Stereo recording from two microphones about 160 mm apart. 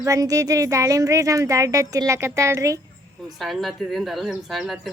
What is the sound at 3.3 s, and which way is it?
Speech, centre (ahead or behind).